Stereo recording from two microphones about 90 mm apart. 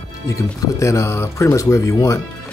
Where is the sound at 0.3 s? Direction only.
35° left (ahead or behind).